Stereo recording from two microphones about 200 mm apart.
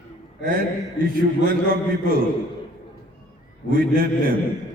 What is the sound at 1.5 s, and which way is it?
Mantra, 45° right (ahead or behind).